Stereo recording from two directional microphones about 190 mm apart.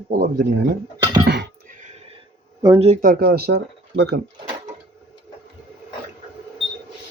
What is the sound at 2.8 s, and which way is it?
Speech, 45° right (ahead or behind).